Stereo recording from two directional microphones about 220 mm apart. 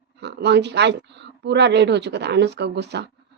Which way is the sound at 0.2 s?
50° right (ahead or behind).